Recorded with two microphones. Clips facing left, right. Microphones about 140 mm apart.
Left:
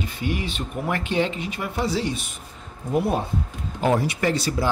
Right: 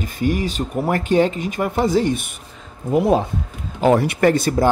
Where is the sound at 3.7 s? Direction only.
80° right; by 4.7 s 50° right (ahead or behind).